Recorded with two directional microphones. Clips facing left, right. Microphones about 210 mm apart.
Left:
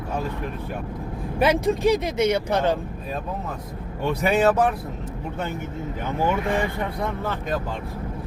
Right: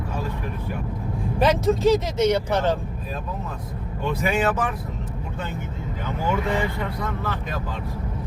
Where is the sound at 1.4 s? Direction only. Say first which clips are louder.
Even; 10° left (ahead or behind).